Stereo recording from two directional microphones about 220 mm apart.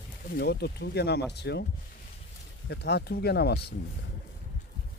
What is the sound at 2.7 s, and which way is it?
Speech, 50° left (ahead or behind).